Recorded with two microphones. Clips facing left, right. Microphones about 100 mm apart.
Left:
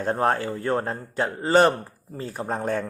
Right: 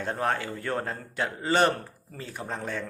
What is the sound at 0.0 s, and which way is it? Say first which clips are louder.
A man's voice: left 6 dB; 40° left (ahead or behind).